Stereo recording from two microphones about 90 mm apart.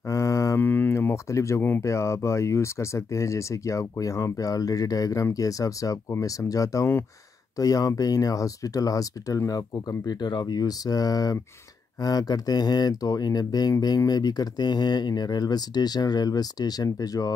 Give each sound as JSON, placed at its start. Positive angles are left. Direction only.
{"t": 0.1, "sound": "mantra", "side_deg": 35}
{"t": 0.6, "sound": "speech", "side_deg": 25}
{"t": 10.0, "sound": "speech", "side_deg": 50}